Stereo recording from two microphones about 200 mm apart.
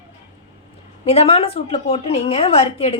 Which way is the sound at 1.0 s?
30° left (ahead or behind).